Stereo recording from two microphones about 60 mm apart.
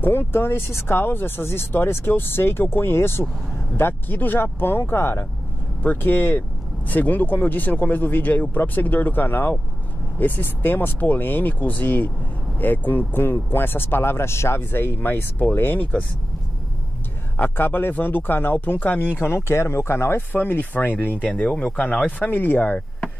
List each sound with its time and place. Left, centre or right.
0.0 s speech: left
17.4 s speech: left
21.4 s speech: left
22.2 s speech: left